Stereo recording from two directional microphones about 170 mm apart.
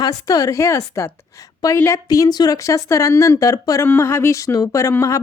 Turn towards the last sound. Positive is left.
turn(degrees=15)  # may be behind; listen again after turning